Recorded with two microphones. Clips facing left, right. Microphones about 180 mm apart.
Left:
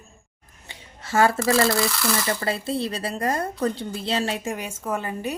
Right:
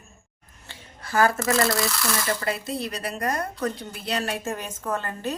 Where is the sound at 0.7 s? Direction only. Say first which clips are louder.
Left 2 dB; 25° left (ahead or behind).